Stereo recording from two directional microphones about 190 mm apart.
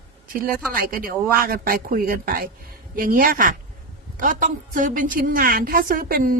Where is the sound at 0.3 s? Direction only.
50° right (ahead or behind).